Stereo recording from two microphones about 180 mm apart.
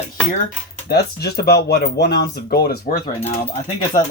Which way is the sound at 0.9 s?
65° left (ahead or behind).